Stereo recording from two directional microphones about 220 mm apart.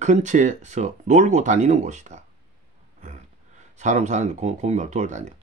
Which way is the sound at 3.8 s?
30° right (ahead or behind).